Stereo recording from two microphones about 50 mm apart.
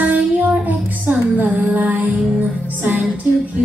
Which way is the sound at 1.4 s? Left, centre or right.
Right.